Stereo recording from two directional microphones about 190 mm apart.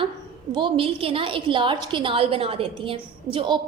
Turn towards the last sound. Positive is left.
turn(degrees=-25)  # may be behind; listen again after turning